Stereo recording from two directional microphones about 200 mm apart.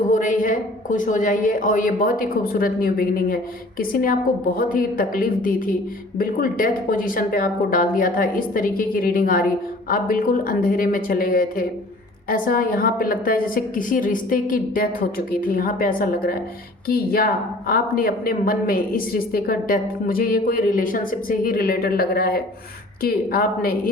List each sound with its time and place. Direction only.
0.1 s a woman's voice: 40° left (ahead or behind)